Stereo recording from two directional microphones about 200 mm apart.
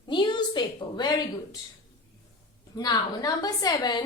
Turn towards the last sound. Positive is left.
turn(degrees=20)  # may be behind; listen again after turning